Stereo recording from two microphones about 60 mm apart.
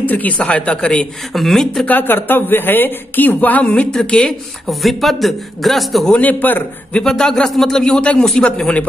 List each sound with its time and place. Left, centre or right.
0.0 s speech: left
1.3 s a man's voice: centre
1.9 s speech: left
4.6 s a man's voice: centre
6.1 s speech: left
7.0 s speech: centre